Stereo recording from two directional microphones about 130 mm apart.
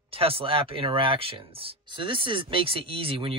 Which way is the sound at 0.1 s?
45° right (ahead or behind).